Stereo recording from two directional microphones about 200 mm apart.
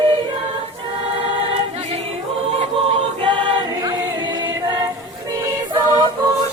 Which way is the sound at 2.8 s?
25° right (ahead or behind).